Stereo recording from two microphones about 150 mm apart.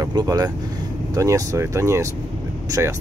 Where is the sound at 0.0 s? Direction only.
25° right (ahead or behind).